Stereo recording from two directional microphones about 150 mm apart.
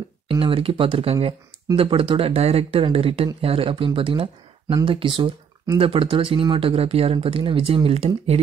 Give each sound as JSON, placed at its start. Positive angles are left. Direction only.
{"t": 0.3, "sound": "speech", "side_deg": -35}